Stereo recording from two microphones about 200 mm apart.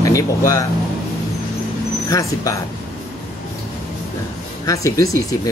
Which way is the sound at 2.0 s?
15° left (ahead or behind).